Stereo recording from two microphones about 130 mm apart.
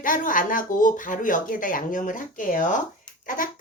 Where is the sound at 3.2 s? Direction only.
90° left.